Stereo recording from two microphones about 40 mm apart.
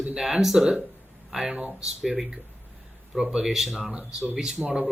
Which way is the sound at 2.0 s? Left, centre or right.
Centre.